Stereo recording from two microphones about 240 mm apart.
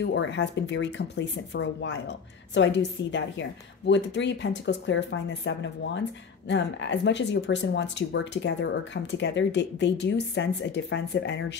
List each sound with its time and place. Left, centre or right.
0.0 s a woman's voice: left